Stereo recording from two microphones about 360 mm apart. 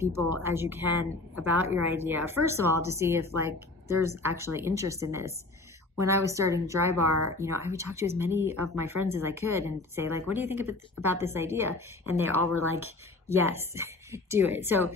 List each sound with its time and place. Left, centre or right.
0.0 s a woman's voice: centre
7.1 s speech: right
7.3 s speech: centre